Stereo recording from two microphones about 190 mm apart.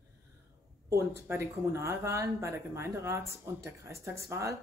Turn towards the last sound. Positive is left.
turn(degrees=-15)  # may be behind; listen again after turning